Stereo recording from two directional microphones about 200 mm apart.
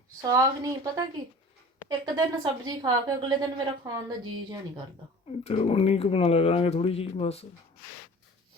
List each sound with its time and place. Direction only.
0.2 s a woman's voice: 20° right (ahead or behind)
5.4 s speech: 30° left (ahead or behind)